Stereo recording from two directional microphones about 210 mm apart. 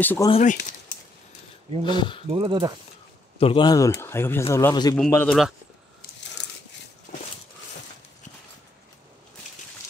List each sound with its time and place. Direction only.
0.0 s speech: 10° left (ahead or behind)
0.3 s speech: 35° left (ahead or behind)
1.9 s speech: 20° left (ahead or behind)
2.2 s speech: 25° right (ahead or behind)
3.3 s speech: 25° left (ahead or behind)
4.9 s a man's voice: 5° left (ahead or behind)